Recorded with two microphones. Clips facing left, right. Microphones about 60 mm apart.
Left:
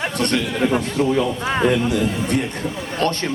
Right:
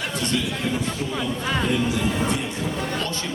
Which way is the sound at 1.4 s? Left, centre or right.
Left.